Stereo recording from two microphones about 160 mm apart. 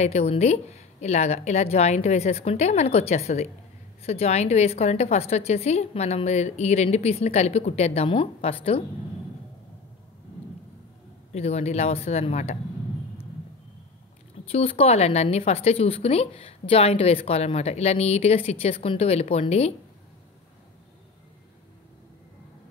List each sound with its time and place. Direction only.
0.0 s a woman's voice: 40° left (ahead or behind)
11.3 s speech: 40° left (ahead or behind)
14.5 s speech: 40° left (ahead or behind)